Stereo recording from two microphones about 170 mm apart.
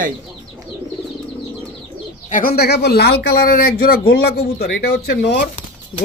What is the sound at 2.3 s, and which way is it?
A man's voice, 60° left (ahead or behind).